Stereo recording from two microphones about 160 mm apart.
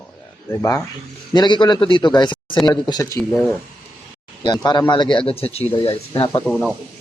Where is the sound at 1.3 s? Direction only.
30° left (ahead or behind).